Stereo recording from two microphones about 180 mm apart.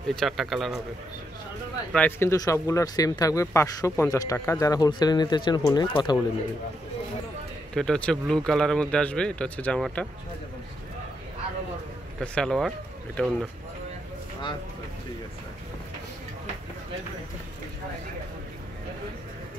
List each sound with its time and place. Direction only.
0.1 s speech: centre (ahead or behind)
1.9 s speech: 10° left (ahead or behind)
7.7 s speech: 5° left (ahead or behind)
12.2 s speech: 5° left (ahead or behind)